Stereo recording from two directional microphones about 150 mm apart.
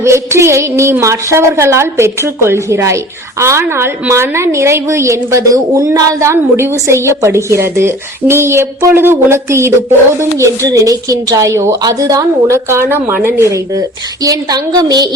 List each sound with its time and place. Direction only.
0.0 s a woman's voice: 15° right (ahead or behind)